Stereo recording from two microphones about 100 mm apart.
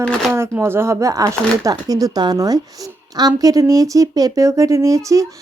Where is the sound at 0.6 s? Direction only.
25° right (ahead or behind).